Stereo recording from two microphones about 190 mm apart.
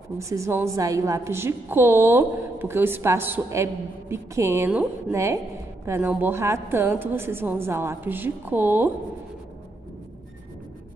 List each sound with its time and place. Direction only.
0.2 s a woman's voice: 15° right (ahead or behind)